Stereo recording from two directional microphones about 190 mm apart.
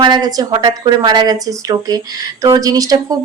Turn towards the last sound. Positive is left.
turn(degrees=-20)  # may be behind; listen again after turning